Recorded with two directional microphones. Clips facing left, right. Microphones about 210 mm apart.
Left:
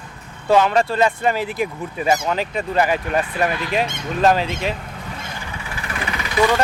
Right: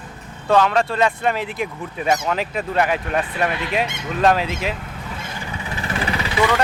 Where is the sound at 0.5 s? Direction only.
5° left (ahead or behind).